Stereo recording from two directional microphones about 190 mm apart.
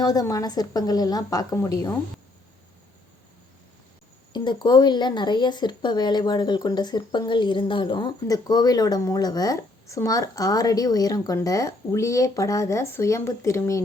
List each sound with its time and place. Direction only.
0.0 s speech: 20° left (ahead or behind)
4.3 s speech: 25° left (ahead or behind)